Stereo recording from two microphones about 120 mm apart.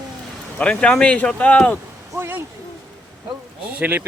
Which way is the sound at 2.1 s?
20° right (ahead or behind).